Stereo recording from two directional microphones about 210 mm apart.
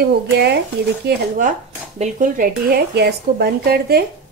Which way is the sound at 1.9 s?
40° right (ahead or behind).